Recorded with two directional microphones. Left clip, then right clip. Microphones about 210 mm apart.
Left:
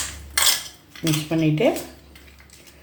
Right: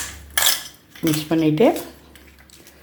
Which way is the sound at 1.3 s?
35° right (ahead or behind).